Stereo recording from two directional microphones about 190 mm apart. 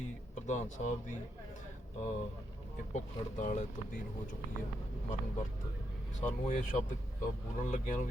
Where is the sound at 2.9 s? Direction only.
40° left (ahead or behind).